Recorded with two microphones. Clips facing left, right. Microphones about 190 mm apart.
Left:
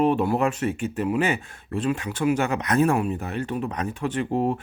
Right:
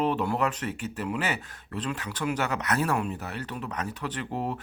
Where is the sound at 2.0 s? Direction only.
15° left (ahead or behind).